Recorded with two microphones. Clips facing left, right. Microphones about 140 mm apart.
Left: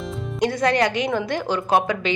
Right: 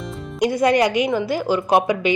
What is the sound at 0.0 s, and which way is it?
Music, centre (ahead or behind).